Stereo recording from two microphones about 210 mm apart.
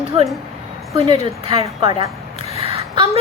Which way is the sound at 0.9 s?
25° right (ahead or behind).